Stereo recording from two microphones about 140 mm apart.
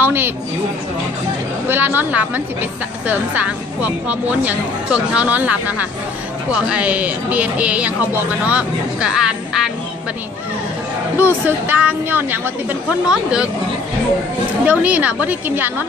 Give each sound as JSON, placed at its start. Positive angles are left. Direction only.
{"t": 0.0, "sound": "a woman's voice", "side_deg": -15}
{"t": 1.7, "sound": "speech", "side_deg": -15}
{"t": 11.1, "sound": "speech", "side_deg": -15}
{"t": 14.6, "sound": "speech", "side_deg": -10}